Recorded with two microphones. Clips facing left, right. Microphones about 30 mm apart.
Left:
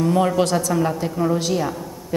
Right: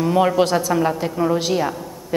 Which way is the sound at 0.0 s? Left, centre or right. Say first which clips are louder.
Right 2 dB; centre.